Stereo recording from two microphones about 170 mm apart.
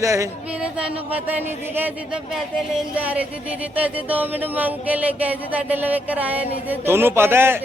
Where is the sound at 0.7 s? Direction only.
10° right (ahead or behind).